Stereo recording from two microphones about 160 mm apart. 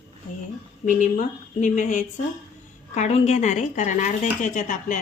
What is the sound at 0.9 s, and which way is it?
Speech, 50° left (ahead or behind).